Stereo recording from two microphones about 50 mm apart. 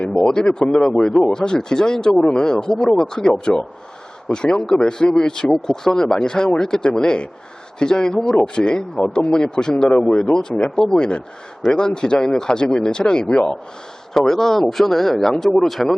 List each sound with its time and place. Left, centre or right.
0.1 s speech: centre